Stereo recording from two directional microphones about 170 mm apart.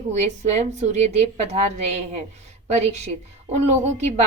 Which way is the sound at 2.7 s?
40° right (ahead or behind).